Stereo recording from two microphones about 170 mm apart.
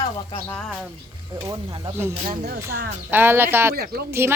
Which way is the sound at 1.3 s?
20° right (ahead or behind).